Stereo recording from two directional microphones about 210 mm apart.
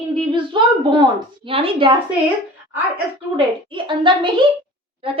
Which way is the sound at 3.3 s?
25° right (ahead or behind).